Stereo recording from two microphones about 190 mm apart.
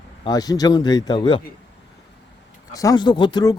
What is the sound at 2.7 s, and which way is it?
Speech, 20° left (ahead or behind).